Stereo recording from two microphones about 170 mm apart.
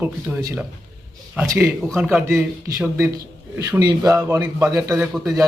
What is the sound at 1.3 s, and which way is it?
A man's voice, 15° right (ahead or behind).